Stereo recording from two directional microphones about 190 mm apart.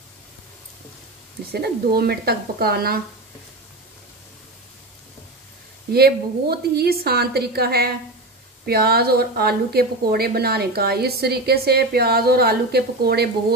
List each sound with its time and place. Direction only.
1.5 s speech: 55° right (ahead or behind)
5.9 s speech: 55° right (ahead or behind)